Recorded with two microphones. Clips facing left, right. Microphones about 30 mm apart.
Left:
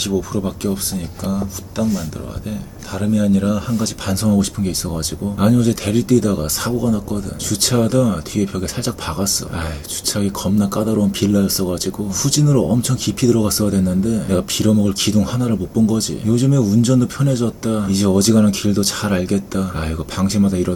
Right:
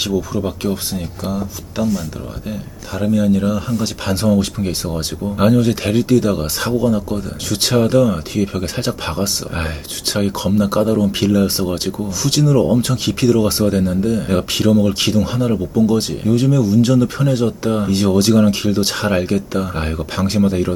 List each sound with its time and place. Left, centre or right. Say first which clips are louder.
0.0 s speech: right 1 dB; centre
4.1 s speech: right 1 dB; centre